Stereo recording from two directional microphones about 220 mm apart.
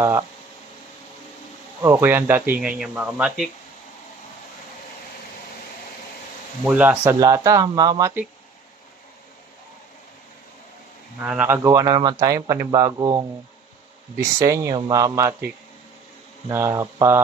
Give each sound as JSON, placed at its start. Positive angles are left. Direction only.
{"t": 1.8, "sound": "speech", "side_deg": -10}
{"t": 6.6, "sound": "speech", "side_deg": -5}
{"t": 11.2, "sound": "speech", "side_deg": -10}